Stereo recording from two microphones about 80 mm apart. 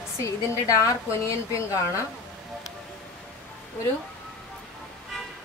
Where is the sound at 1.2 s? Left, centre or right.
Left.